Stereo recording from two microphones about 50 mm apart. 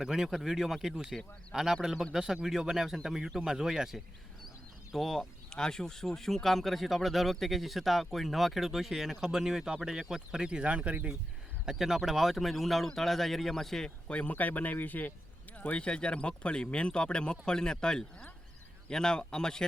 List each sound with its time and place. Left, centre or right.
0.0 s speech: centre
4.9 s speech: centre
10.7 s speech: right
11.6 s speech: centre
14.1 s speech: left; by 19.6 s centre